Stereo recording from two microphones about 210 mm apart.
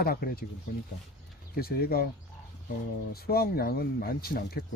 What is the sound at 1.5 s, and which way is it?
Speech, 45° left (ahead or behind).